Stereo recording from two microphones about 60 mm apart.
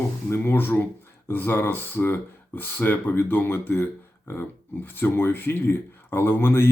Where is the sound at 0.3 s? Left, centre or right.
Left.